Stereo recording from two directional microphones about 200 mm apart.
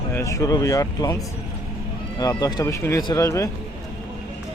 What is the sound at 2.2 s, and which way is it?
Speech, 20° left (ahead or behind).